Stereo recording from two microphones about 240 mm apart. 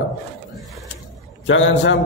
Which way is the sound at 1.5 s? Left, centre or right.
Left.